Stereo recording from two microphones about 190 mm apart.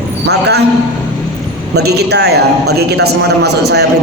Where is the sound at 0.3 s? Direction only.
60° right (ahead or behind).